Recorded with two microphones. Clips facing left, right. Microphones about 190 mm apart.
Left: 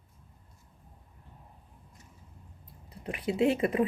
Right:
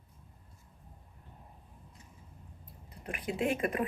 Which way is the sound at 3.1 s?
25° left (ahead or behind).